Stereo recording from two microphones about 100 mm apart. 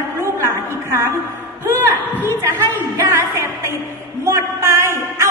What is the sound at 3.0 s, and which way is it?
Speech, 30° right (ahead or behind).